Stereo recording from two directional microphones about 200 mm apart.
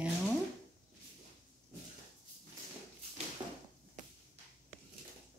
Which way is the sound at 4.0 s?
40° right (ahead or behind).